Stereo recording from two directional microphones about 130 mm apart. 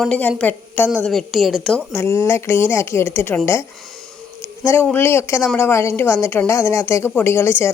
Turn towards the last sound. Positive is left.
turn(degrees=20)  # may be behind; listen again after turning